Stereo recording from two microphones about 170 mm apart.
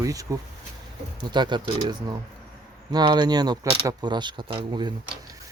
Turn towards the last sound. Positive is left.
turn(degrees=-25)  # may be behind; listen again after turning